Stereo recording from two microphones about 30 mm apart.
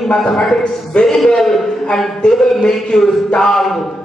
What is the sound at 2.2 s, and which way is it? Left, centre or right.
Music, left.